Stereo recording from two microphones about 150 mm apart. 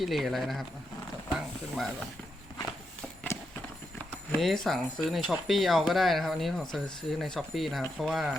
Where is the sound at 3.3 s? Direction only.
15° left (ahead or behind).